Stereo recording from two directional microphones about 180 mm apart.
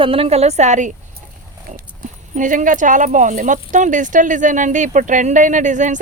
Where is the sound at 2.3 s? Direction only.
45° right (ahead or behind).